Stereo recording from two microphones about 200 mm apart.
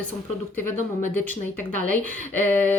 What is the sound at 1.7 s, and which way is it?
Speech, 40° right (ahead or behind).